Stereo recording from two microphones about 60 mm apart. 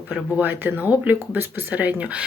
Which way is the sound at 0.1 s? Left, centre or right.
Right.